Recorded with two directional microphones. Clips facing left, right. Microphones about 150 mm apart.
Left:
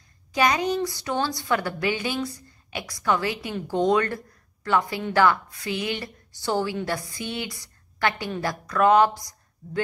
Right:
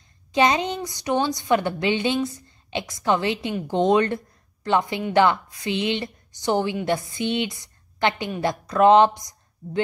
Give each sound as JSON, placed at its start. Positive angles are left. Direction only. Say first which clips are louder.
{"t": 0.3, "sound": "a woman's voice", "louder": "right 2 dB", "side_deg": -25}